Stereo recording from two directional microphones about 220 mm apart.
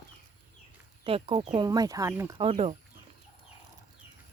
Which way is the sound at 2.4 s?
25° right (ahead or behind).